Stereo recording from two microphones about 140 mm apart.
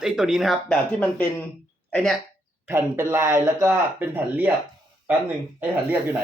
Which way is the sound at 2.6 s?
15° right (ahead or behind).